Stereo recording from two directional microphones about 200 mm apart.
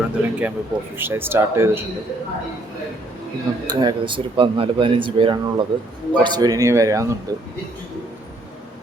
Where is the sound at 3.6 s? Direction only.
20° right (ahead or behind).